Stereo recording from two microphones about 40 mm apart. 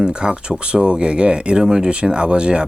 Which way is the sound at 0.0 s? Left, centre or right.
Right.